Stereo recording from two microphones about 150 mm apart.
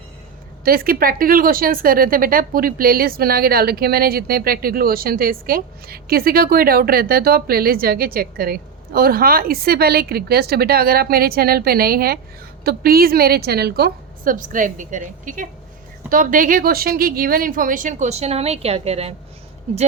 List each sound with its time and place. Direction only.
0.6 s a woman's voice: 75° right (ahead or behind); by 19.1 s 45° right (ahead or behind)